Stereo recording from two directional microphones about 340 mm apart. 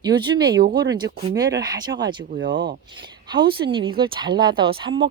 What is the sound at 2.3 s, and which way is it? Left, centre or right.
Speech, right.